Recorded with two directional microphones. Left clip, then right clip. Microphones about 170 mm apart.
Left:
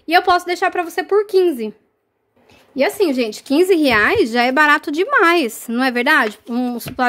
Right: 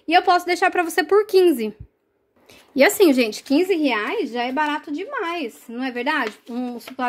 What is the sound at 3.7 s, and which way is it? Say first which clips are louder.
A woman's voice: left 8 dB; 40° left (ahead or behind).